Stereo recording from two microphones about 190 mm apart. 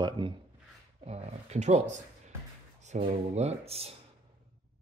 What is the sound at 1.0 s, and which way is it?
Speech, 35° right (ahead or behind).